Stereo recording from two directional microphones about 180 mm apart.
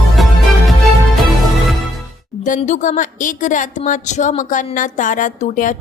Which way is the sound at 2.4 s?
45° left (ahead or behind).